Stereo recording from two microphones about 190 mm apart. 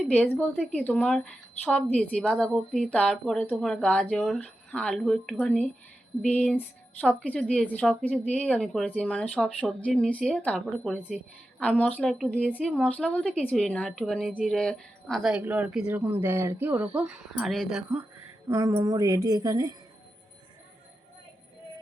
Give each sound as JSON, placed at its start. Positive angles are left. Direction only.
{"t": 0.0, "sound": "a woman's voice", "side_deg": 5}
{"t": 18.4, "sound": "a woman's voice", "side_deg": -15}